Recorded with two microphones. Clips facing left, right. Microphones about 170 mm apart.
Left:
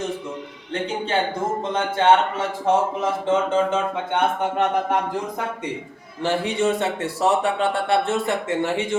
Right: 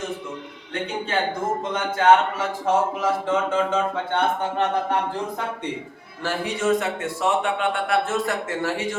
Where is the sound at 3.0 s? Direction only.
25° left (ahead or behind).